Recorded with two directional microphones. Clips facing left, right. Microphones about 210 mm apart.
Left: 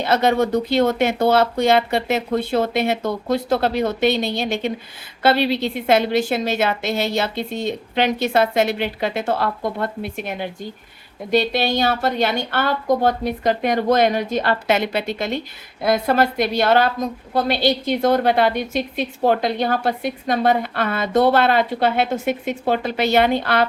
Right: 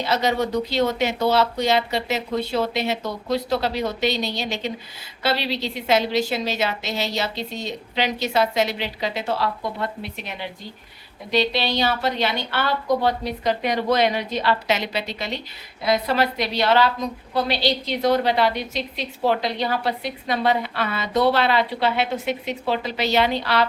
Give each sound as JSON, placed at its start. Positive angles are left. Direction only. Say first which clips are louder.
{"t": 0.0, "sound": "a woman's voice", "louder": "left 4 dB", "side_deg": 55}